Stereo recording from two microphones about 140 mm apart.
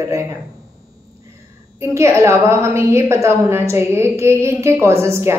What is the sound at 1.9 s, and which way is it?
A woman's voice, 20° right (ahead or behind).